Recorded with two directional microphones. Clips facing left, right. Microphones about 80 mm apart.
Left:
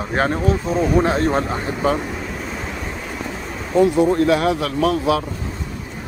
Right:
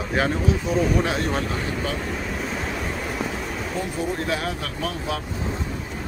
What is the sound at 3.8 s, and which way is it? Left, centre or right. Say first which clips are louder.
Speech: left 15 dB; left.